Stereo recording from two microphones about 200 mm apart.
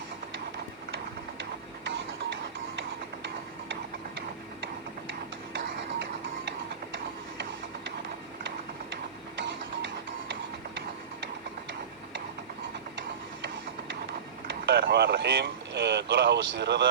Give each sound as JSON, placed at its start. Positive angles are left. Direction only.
{"t": 5.5, "sound": "music", "side_deg": -60}
{"t": 14.7, "sound": "speech", "side_deg": -50}